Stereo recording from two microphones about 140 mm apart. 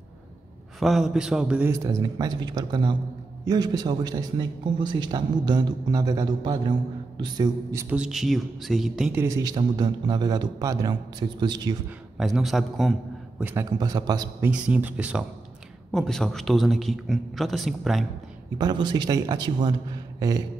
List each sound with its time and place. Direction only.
0.7 s a man's voice: centre (ahead or behind)
1.7 s a man's voice: 25° right (ahead or behind)
7.9 s a man's voice: 5° right (ahead or behind)
9.1 s a man's voice: 20° right (ahead or behind)
12.2 s a man's voice: centre (ahead or behind)
13.4 s a man's voice: 10° right (ahead or behind)
13.7 s a man's voice: 30° right (ahead or behind)
14.4 s speech: 10° right (ahead or behind)
15.9 s a man's voice: 5° left (ahead or behind)
18.6 s a man's voice: 30° right (ahead or behind)
20.2 s a sound: 25° right (ahead or behind)